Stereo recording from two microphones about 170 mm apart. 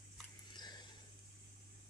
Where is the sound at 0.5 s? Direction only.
25° left (ahead or behind).